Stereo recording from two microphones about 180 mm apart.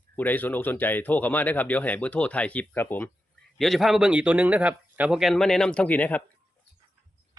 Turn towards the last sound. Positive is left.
turn(degrees=10)  # may be behind; listen again after turning